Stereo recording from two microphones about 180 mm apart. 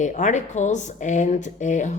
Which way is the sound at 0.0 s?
45° left (ahead or behind).